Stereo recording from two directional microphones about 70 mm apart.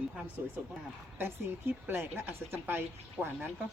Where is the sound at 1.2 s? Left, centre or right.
Right.